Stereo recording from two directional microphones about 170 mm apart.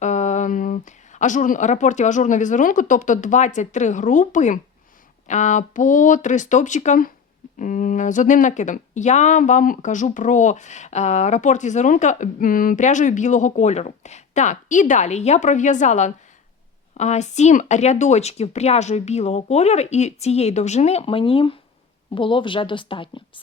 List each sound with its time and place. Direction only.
0.0 s a woman's voice: 45° left (ahead or behind)